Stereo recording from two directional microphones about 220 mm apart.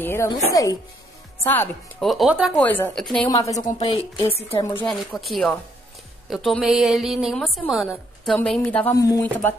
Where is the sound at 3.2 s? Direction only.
15° left (ahead or behind).